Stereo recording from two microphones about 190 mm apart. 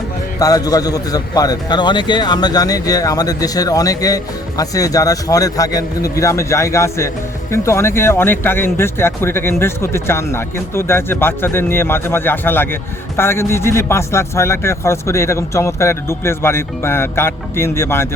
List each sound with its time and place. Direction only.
0.3 s a man's voice: 20° left (ahead or behind)